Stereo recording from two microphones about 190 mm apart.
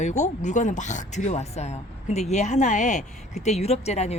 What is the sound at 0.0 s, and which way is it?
Speech, 40° left (ahead or behind).